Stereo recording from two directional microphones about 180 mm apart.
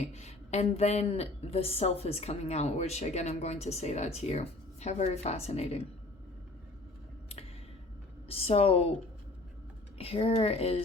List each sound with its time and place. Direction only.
0.1 s a woman's voice: 35° left (ahead or behind)
8.3 s a woman's voice: 30° left (ahead or behind)
10.0 s a woman's voice: 30° left (ahead or behind)